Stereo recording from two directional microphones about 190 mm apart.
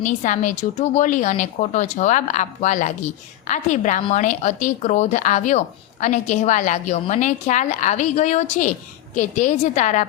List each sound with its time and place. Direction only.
0.0 s speech: 40° left (ahead or behind)